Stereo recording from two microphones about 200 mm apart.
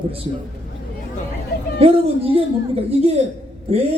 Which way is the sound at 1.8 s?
30° right (ahead or behind).